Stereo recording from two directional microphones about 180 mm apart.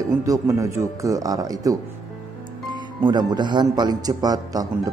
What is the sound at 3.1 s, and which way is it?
A man's voice, 25° right (ahead or behind).